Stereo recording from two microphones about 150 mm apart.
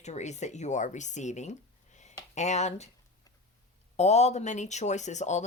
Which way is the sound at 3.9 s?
45° left (ahead or behind).